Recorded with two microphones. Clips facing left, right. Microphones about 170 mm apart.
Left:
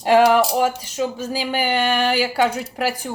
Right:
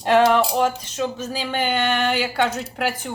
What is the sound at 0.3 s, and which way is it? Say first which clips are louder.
Speech: left 1 dB; 5° left (ahead or behind).